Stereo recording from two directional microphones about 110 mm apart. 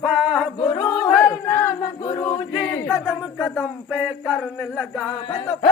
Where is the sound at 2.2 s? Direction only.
20° left (ahead or behind).